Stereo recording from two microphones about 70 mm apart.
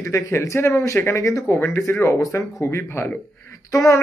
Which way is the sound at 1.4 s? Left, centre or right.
Left.